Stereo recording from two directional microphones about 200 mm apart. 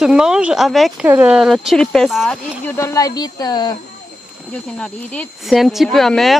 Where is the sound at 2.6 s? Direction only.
15° left (ahead or behind).